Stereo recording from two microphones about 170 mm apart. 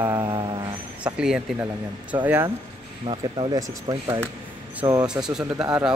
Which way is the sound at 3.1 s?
25° right (ahead or behind).